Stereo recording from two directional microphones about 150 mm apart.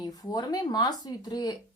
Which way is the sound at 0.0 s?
25° left (ahead or behind).